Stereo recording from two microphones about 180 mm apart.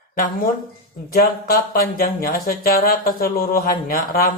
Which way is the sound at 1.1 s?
60° left (ahead or behind).